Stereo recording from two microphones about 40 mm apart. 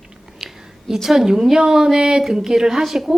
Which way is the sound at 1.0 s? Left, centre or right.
Centre.